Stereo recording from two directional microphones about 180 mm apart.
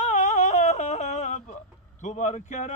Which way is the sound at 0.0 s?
40° left (ahead or behind).